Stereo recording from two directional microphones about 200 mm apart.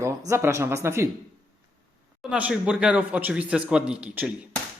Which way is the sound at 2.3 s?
5° right (ahead or behind).